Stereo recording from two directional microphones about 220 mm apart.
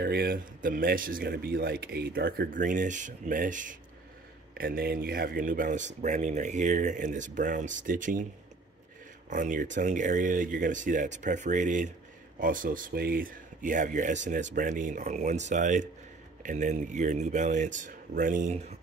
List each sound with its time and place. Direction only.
0.0 s speech: 45° right (ahead or behind)
9.3 s speech: 35° right (ahead or behind)